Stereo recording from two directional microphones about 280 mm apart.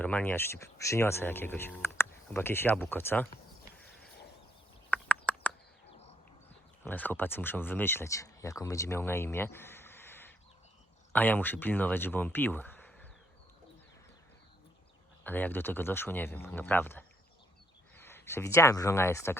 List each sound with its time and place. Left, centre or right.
0.0 s speech: centre
5.2 s a sound: centre
6.8 s speech: centre
15.2 s speech: centre